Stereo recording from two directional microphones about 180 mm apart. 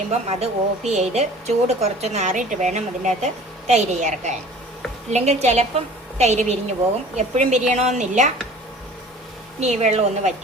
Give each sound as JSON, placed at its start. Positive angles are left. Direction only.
{"t": 0.1, "sound": "speech", "side_deg": -40}
{"t": 9.6, "sound": "speech", "side_deg": -40}